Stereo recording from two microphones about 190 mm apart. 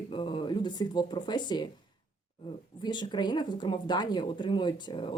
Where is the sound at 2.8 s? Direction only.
25° left (ahead or behind).